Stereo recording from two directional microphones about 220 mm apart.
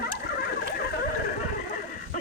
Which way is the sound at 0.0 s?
45° left (ahead or behind).